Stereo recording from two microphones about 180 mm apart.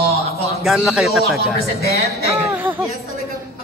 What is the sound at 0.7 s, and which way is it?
Speech, centre (ahead or behind).